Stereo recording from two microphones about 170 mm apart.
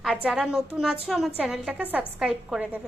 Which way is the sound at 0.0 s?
5° right (ahead or behind).